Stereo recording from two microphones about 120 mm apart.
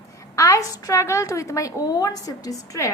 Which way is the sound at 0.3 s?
25° left (ahead or behind).